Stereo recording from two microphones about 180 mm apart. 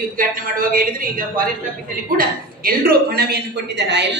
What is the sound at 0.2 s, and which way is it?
A woman's voice, 50° right (ahead or behind).